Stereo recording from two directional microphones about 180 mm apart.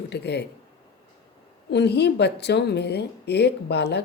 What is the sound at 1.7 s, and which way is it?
A woman's voice, 70° left (ahead or behind).